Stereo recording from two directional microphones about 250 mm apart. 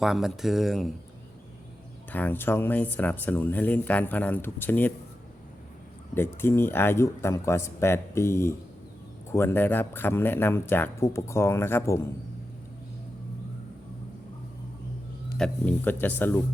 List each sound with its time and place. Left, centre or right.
0.0 s speech: centre
2.1 s speech: centre
6.1 s speech: centre
15.4 s speech: centre